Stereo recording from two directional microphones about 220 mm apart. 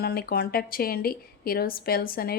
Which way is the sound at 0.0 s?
45° left (ahead or behind).